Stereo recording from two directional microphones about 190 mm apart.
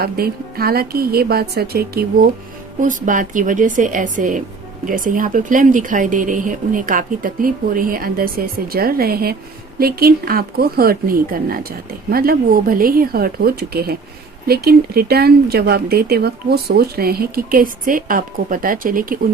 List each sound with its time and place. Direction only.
0.0 s speech: 55° right (ahead or behind)
2.8 s speech: 45° right (ahead or behind)